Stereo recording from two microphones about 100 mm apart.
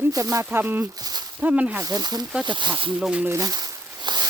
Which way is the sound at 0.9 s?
40° right (ahead or behind).